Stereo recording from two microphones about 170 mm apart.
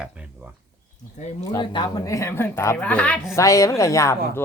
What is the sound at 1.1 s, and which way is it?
Speech, 40° left (ahead or behind).